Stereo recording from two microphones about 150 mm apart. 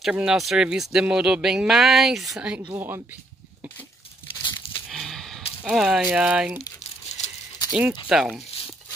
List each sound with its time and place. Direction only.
0.0 s speech: 5° right (ahead or behind)
4.4 s crumpling: 30° left (ahead or behind)
4.8 s a sound: centre (ahead or behind)
5.6 s speech: 5° right (ahead or behind)
8.1 s speech: 5° right (ahead or behind)